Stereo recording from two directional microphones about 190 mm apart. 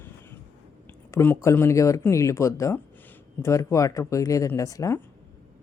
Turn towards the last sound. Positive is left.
turn(degrees=15)  # may be behind; listen again after turning